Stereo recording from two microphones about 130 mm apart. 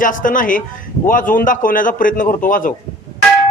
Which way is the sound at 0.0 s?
90° left.